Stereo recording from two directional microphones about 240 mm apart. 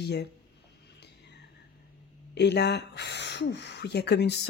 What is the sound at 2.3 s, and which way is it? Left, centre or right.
Speech, left.